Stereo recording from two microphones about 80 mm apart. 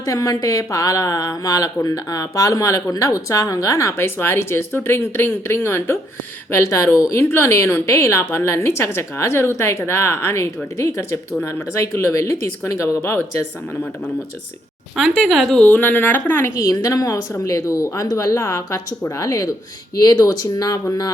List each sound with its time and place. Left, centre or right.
0.0 s a woman's voice: left
14.9 s speech: centre
15.6 s speech: left
16.6 s a woman's voice: left